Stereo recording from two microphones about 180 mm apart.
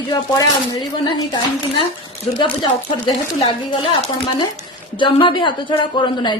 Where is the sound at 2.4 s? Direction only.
25° left (ahead or behind).